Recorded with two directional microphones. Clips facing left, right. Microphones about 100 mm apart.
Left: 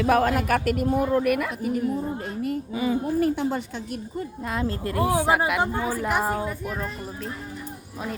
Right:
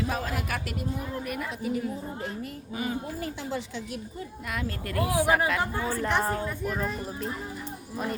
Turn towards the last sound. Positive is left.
turn(degrees=0)  # may be behind; listen again after turning